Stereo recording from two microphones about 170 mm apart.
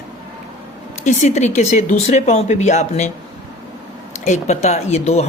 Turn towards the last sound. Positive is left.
turn(degrees=40)  # may be behind; listen again after turning